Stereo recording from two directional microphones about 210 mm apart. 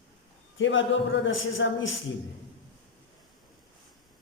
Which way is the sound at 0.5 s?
65° left (ahead or behind).